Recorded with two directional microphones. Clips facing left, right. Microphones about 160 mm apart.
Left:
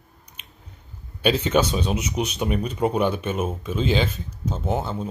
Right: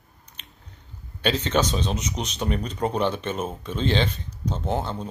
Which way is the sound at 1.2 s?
10° left (ahead or behind).